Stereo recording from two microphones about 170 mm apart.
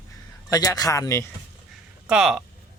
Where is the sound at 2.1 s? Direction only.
5° right (ahead or behind).